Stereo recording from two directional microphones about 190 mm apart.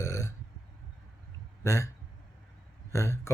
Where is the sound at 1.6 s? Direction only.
15° left (ahead or behind).